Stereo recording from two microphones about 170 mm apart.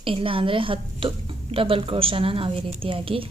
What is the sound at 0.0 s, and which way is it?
A woman's voice, 30° right (ahead or behind).